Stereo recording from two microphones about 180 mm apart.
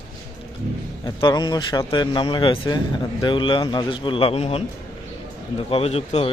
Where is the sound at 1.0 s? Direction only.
25° left (ahead or behind).